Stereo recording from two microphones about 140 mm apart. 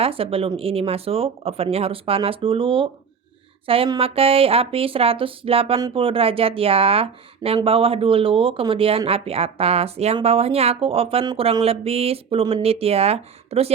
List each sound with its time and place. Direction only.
0.0 s speech: 40° right (ahead or behind)
3.9 s speech: 45° right (ahead or behind)